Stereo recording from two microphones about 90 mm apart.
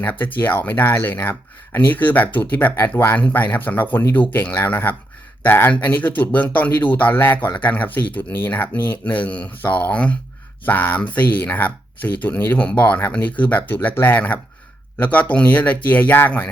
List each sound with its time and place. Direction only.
0.0 s speech: 20° left (ahead or behind)